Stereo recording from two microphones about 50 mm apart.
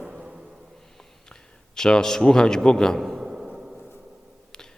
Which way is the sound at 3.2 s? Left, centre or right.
Centre.